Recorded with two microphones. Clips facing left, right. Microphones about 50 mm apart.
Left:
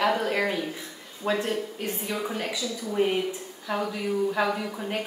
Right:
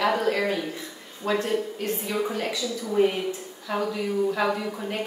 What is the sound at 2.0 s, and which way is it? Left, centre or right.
A woman's voice, centre.